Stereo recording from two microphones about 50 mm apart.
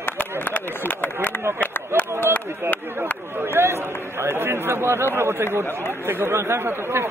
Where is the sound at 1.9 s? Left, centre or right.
Right.